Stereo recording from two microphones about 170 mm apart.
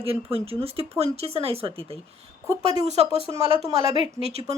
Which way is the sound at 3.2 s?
30° left (ahead or behind).